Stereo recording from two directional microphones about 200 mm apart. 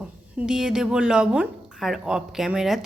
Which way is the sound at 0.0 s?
5° right (ahead or behind).